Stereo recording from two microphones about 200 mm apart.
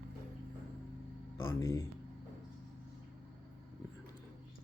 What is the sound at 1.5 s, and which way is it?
Speech, 15° left (ahead or behind).